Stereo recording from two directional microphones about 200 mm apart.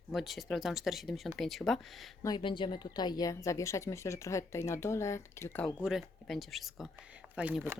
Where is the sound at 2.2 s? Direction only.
25° left (ahead or behind).